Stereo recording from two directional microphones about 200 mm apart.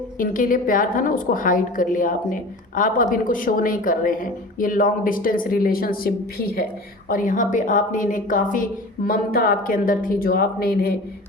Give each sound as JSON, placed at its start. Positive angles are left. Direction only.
{"t": 0.2, "sound": "a woman's voice", "side_deg": 45}